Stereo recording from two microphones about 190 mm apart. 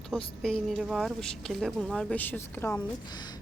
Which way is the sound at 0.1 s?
5° right (ahead or behind).